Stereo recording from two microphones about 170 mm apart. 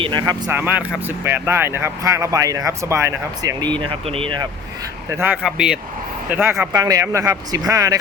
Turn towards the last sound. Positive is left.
turn(degrees=-20)  # may be behind; listen again after turning